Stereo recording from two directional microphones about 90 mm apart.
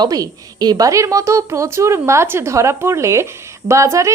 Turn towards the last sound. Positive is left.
turn(degrees=-35)  # may be behind; listen again after turning